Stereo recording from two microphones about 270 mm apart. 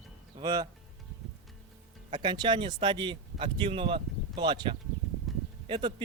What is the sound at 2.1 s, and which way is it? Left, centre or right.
Speech, centre.